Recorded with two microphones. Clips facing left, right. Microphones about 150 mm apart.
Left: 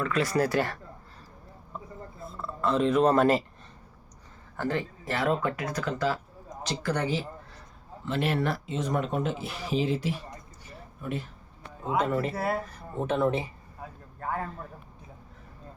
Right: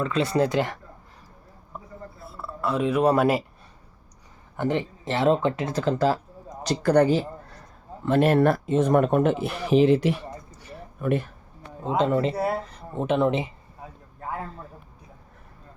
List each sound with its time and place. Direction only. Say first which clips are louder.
0.0 s speech: right 3 dB; 25° right (ahead or behind)
2.2 s speech: even; 10° right (ahead or behind)
4.5 s a man's voice: right 4 dB; 20° right (ahead or behind); by 10.2 s 65° right (ahead or behind)
10.6 s a sound: right 11 dB; 65° right (ahead or behind)
11.9 s speech: right 5 dB; 25° right (ahead or behind)